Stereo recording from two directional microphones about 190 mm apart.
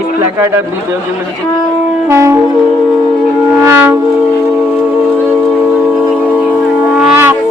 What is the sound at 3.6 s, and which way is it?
Music, 15° right (ahead or behind).